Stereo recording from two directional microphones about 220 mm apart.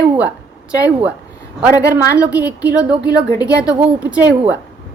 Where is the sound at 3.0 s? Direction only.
15° left (ahead or behind).